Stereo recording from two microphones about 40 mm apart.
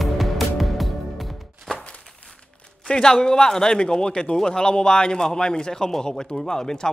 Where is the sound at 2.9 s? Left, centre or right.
Centre.